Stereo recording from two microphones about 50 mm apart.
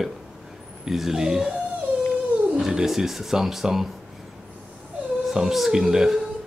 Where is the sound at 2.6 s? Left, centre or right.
Centre.